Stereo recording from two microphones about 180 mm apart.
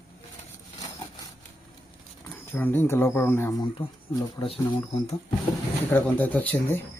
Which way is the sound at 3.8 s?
30° left (ahead or behind).